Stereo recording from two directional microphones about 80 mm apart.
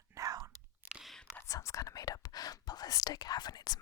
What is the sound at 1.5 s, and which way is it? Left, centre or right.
Whispering, left.